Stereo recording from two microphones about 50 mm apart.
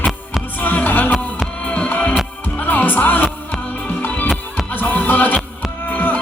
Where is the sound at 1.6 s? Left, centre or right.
Left.